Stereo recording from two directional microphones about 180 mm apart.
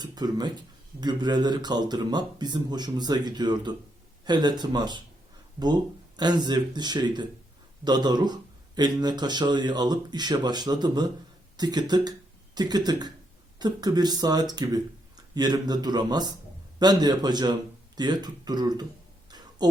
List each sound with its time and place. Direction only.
0.0 s speech: 20° right (ahead or behind)